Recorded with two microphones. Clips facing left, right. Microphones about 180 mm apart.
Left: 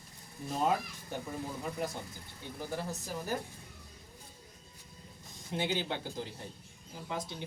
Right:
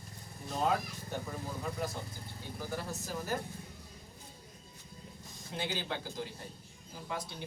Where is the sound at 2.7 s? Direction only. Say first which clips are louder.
Left 1 dB; 20° left (ahead or behind).